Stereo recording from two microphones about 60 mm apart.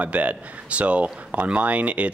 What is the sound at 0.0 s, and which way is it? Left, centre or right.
Speech, right.